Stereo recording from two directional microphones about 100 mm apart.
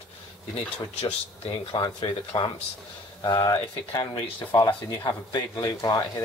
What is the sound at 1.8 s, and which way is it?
Speech, 45° left (ahead or behind).